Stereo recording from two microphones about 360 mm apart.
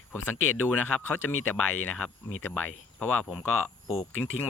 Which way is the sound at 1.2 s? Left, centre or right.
Left.